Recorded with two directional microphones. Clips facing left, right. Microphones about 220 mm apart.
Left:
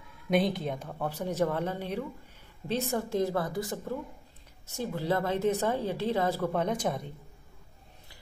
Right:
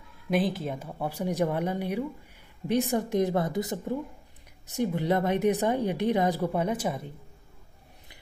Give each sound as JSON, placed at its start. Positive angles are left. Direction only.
{"t": 0.3, "sound": "a woman's voice", "side_deg": 0}